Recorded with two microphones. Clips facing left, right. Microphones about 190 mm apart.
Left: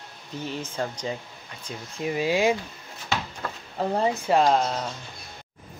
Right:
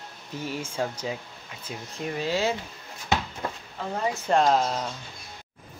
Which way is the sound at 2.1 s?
10° left (ahead or behind).